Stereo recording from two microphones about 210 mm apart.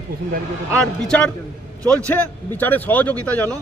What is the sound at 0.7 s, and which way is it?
Speech, 5° left (ahead or behind).